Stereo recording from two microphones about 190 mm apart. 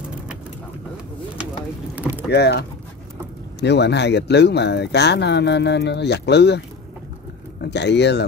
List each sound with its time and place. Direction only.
2.0 s vehicle: 10° right (ahead or behind)
2.3 s speech: 60° left (ahead or behind)
3.6 s speech: 65° left (ahead or behind)
7.6 s speech: 65° left (ahead or behind)